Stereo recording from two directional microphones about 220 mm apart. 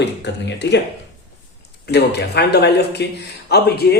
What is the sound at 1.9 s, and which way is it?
Speech, 50° left (ahead or behind).